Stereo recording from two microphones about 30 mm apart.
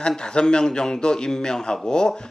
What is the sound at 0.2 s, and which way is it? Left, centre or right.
A man's voice, left.